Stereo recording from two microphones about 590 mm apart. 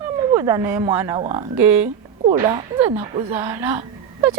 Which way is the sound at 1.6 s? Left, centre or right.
Right.